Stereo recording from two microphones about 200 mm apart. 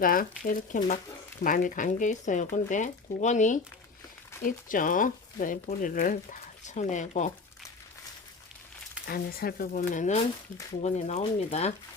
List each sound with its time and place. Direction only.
0.0 s speech: 45° left (ahead or behind)
9.0 s speech: 50° left (ahead or behind); by 11.7 s 30° left (ahead or behind)